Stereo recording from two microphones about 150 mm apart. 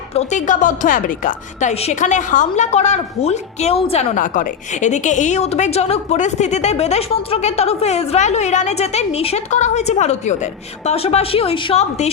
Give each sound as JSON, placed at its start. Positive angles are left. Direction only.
{"t": 0.1, "sound": "a woman's voice", "side_deg": 50}
{"t": 1.7, "sound": "a woman's voice", "side_deg": 45}
{"t": 4.1, "sound": "a woman's voice", "side_deg": 60}